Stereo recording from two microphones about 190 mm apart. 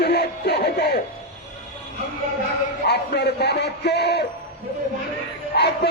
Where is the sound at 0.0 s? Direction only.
60° left (ahead or behind).